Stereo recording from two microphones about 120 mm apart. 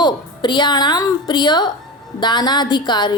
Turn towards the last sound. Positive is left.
turn(degrees=40)  # may be behind; listen again after turning